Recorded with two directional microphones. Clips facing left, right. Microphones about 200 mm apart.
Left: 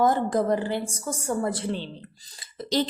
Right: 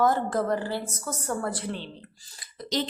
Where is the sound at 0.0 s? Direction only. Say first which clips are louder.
Left 2 dB; 15° left (ahead or behind).